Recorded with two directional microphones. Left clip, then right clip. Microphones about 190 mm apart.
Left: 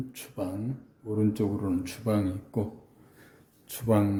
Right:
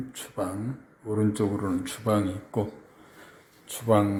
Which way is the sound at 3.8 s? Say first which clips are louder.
Right 4 dB; 20° left (ahead or behind).